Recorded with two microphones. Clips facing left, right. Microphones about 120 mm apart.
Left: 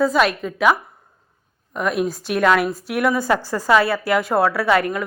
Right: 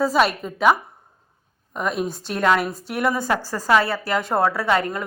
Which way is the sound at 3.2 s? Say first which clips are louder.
Left 3 dB; 15° right (ahead or behind).